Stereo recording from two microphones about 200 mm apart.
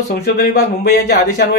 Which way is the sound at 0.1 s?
50° left (ahead or behind).